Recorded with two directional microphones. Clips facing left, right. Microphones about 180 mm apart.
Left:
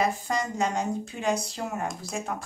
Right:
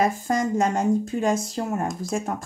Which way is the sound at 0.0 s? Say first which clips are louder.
Right 5 dB; 50° right (ahead or behind).